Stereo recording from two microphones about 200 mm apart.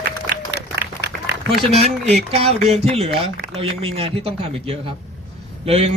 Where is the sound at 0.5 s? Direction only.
55° right (ahead or behind).